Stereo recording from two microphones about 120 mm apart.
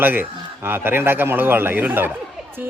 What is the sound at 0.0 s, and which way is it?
A man's voice, 15° right (ahead or behind).